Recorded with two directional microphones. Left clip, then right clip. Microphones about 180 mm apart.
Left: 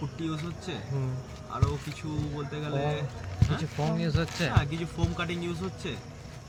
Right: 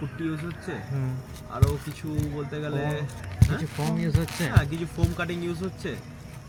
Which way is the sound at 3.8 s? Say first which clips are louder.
Even; 15° left (ahead or behind).